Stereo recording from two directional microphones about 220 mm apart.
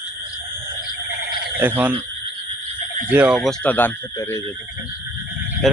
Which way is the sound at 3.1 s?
5° right (ahead or behind).